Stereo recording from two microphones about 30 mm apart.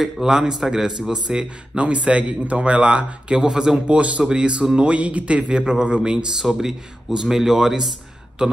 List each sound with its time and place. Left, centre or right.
0.0 s speech: centre
1.8 s speech: right
3.3 s speech: right
3.8 s speech: right
4.2 s speech: right
4.7 s speech: right
5.6 s speech: right
8.4 s speech: right